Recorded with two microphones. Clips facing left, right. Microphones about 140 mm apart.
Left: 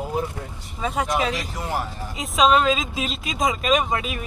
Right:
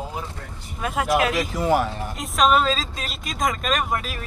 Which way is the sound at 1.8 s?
65° right (ahead or behind).